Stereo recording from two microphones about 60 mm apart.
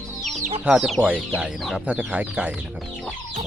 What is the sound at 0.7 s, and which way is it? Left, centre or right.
Speech, right.